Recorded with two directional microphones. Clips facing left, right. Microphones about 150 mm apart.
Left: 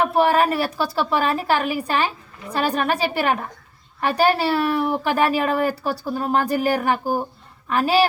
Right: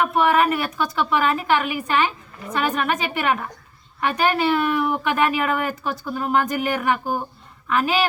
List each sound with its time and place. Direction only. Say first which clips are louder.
0.0 s a woman's voice: left 1 dB; 30° left (ahead or behind)